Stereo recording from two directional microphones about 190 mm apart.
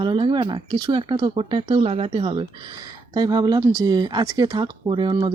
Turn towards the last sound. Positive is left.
turn(degrees=-25)  # may be behind; listen again after turning